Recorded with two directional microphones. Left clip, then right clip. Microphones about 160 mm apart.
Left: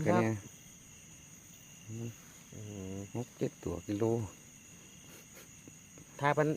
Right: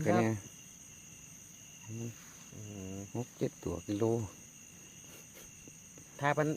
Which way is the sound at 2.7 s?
5° left (ahead or behind).